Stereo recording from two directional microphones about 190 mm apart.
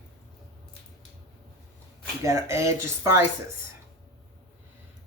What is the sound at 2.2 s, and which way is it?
Speech, 15° right (ahead or behind).